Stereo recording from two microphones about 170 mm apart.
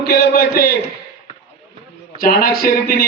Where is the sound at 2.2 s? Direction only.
60° left (ahead or behind).